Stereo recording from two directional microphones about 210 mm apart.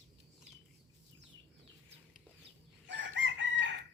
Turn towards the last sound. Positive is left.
turn(degrees=-60)  # may be behind; listen again after turning